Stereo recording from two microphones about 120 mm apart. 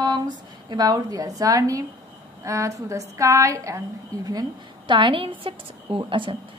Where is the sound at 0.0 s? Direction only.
35° right (ahead or behind).